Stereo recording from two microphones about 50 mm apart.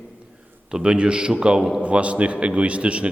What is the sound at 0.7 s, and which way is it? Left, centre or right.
Speech, centre.